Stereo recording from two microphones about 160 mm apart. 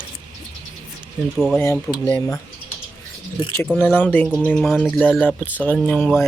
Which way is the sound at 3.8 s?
10° left (ahead or behind).